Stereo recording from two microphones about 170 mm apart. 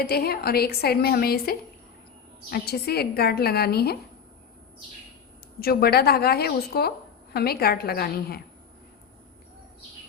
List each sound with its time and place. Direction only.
0.0 s a woman's voice: 65° left (ahead or behind)
5.5 s a woman's voice: 65° left (ahead or behind)